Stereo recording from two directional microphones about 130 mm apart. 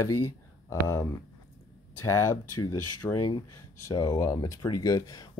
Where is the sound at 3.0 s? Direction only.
15° left (ahead or behind).